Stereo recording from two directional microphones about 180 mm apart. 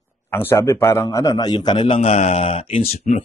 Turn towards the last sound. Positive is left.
turn(degrees=35)  # may be behind; listen again after turning